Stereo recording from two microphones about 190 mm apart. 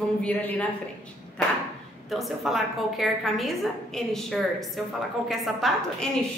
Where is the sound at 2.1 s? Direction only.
Centre (ahead or behind).